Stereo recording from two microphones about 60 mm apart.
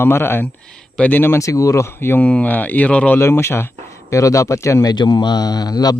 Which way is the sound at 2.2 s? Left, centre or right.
Left.